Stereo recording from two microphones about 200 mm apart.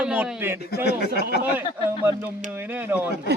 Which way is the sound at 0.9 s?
50° left (ahead or behind).